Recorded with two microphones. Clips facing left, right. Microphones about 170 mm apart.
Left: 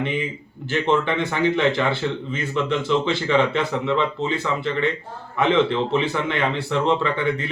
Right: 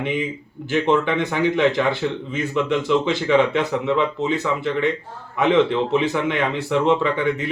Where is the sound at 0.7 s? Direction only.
15° right (ahead or behind).